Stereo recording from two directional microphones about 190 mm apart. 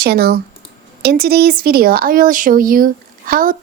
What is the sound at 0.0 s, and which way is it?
Speech, 55° right (ahead or behind).